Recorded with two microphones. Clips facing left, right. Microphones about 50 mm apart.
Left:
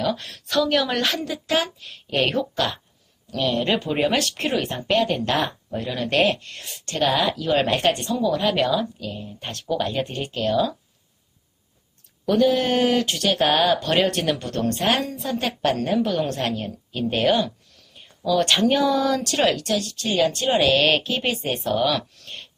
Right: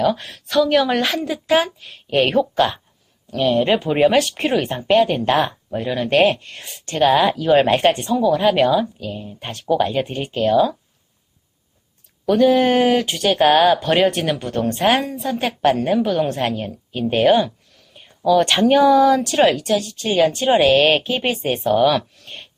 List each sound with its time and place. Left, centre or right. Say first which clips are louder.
0.0 s speech: right 6 dB; centre
12.2 s speech: right 4 dB; centre
12.6 s speech: right 4 dB; centre
17.9 s a sound: right 2 dB; centre
18.3 s speech: right 5 dB; centre